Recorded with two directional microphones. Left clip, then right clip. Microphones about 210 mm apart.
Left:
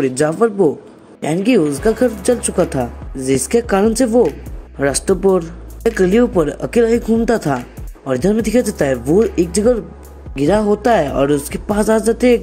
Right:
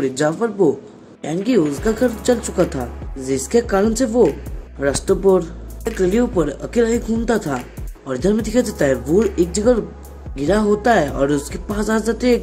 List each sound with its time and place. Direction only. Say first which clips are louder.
0.0 s speech: left 4 dB; 20° left (ahead or behind)